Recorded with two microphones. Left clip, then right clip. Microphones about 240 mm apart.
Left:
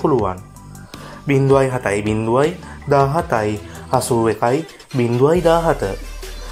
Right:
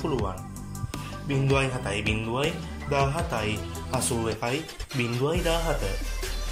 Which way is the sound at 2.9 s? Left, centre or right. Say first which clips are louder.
Left 11 dB; left.